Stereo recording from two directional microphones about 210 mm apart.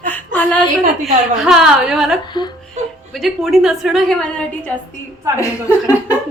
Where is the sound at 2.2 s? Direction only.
20° left (ahead or behind).